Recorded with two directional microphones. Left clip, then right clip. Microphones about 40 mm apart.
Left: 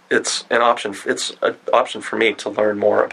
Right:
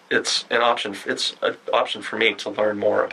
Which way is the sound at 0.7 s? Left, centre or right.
Left.